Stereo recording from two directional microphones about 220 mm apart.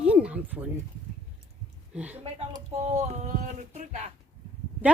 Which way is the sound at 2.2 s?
30° right (ahead or behind).